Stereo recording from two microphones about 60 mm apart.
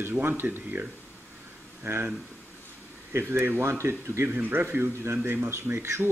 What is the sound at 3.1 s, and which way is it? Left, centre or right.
Speech, right.